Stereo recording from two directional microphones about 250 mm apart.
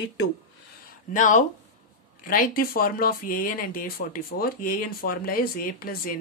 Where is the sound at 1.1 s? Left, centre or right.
Left.